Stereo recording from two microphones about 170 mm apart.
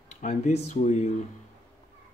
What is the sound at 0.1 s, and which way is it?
Speech, 45° left (ahead or behind).